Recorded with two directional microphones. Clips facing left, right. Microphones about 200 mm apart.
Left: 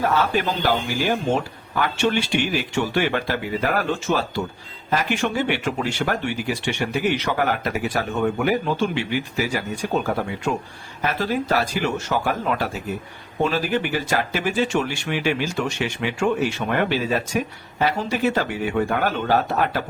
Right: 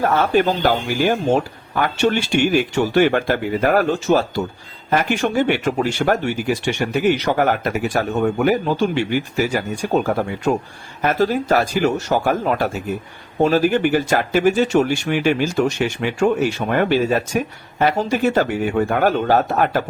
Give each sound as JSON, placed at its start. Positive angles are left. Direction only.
{"t": 0.0, "sound": "speech", "side_deg": -50}